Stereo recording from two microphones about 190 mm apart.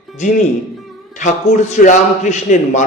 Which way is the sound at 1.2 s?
40° left (ahead or behind).